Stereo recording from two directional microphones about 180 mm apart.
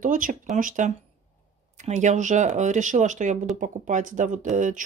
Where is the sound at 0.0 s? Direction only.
50° right (ahead or behind).